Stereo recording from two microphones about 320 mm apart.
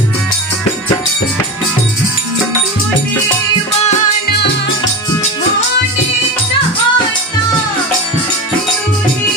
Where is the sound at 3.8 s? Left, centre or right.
Left.